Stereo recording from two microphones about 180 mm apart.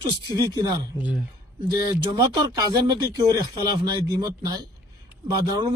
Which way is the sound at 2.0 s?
20° right (ahead or behind).